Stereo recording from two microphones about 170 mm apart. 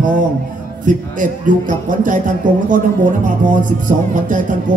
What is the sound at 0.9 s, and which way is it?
A man's voice, 50° right (ahead or behind).